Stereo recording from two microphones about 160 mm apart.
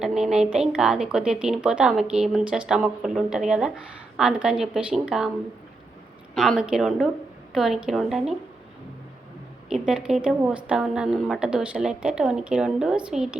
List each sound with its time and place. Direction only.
0.0 s a woman's voice: centre (ahead or behind)
6.3 s a woman's voice: centre (ahead or behind)
9.6 s a woman's voice: centre (ahead or behind)